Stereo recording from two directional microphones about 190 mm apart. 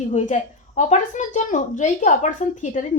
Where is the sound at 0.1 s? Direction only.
40° left (ahead or behind).